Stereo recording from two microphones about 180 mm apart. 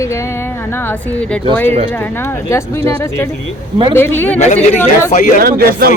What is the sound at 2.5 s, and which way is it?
Speech, 15° left (ahead or behind).